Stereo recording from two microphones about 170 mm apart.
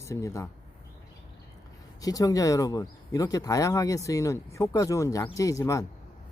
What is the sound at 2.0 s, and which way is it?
A man's voice, 20° left (ahead or behind).